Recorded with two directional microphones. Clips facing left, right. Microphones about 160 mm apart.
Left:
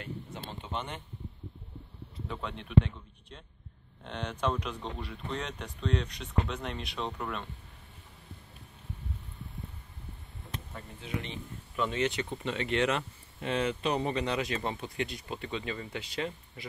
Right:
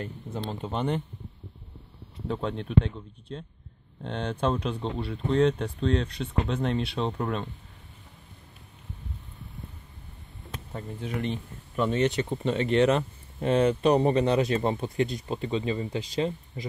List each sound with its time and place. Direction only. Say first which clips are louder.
0.0 s speech: right 6 dB; 40° right (ahead or behind)
2.2 s speech: right 9 dB; 35° right (ahead or behind)
10.7 s speech: right 6 dB; 45° right (ahead or behind)